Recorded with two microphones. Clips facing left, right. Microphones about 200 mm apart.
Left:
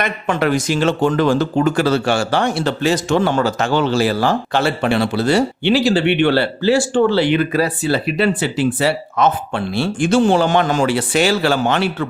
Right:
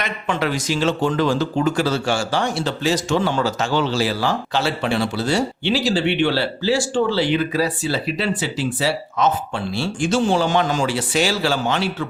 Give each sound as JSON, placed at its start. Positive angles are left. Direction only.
{"t": 0.0, "sound": "speech", "side_deg": 50}